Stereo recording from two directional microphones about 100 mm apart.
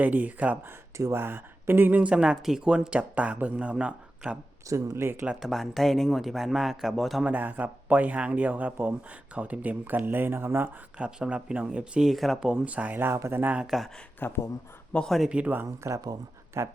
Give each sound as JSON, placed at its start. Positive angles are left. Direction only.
{"t": 0.0, "sound": "speech", "side_deg": -15}
{"t": 0.9, "sound": "speech", "side_deg": -25}
{"t": 4.7, "sound": "speech", "side_deg": -30}
{"t": 5.2, "sound": "speech", "side_deg": -10}
{"t": 5.5, "sound": "a man's voice", "side_deg": 0}
{"t": 7.3, "sound": "speech", "side_deg": -15}
{"t": 10.9, "sound": "speech", "side_deg": -10}
{"t": 13.7, "sound": "a man's voice", "side_deg": 0}
{"t": 14.2, "sound": "speech", "side_deg": 25}
{"t": 14.9, "sound": "a man's voice", "side_deg": 5}
{"t": 15.3, "sound": "speech", "side_deg": -15}
{"t": 15.9, "sound": "speech", "side_deg": -30}